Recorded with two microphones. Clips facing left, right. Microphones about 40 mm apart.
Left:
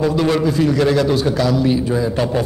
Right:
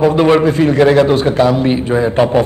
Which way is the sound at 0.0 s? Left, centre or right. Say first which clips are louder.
Right 6 dB; right.